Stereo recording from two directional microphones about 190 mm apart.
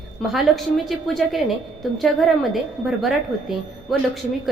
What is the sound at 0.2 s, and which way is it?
A woman's voice, centre (ahead or behind).